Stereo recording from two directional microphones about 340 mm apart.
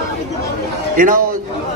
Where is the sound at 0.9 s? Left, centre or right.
Right.